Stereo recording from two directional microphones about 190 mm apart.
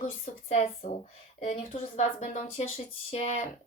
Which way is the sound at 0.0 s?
35° left (ahead or behind).